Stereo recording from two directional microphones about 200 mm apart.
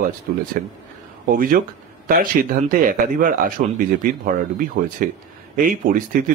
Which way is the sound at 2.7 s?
45° right (ahead or behind).